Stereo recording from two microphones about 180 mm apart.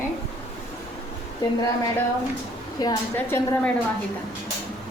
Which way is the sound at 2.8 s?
15° left (ahead or behind).